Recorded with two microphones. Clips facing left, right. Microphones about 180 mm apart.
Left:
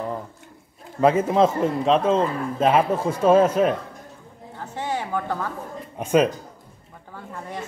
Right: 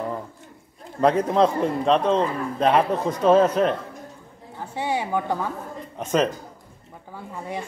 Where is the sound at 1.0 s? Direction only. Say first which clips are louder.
Left 1 dB; 5° left (ahead or behind).